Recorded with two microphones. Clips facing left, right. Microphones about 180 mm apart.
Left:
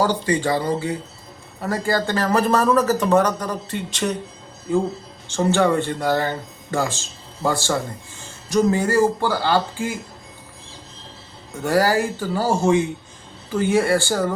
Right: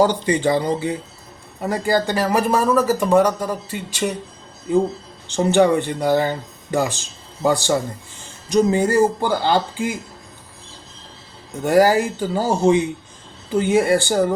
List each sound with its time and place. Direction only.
0.0 s speech: 20° right (ahead or behind)
5.3 s speech: 15° right (ahead or behind)
11.6 s speech: 20° right (ahead or behind)